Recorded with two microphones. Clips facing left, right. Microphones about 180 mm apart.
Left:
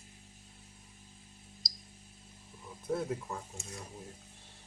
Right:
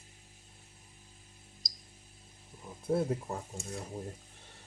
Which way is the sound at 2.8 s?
30° right (ahead or behind).